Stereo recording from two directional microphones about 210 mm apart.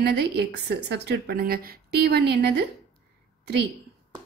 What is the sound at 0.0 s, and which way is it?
A woman's voice, 50° right (ahead or behind).